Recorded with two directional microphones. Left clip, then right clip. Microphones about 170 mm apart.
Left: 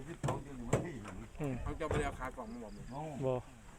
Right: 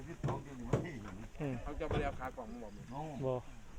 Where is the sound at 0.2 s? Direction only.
55° left (ahead or behind).